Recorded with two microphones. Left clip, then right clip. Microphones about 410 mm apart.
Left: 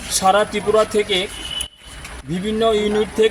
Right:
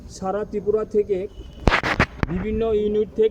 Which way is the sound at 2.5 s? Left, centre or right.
Right.